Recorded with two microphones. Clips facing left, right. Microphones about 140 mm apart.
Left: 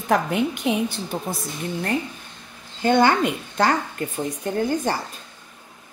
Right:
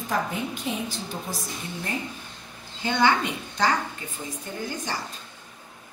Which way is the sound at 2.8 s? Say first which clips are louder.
Left 5 dB; 50° left (ahead or behind).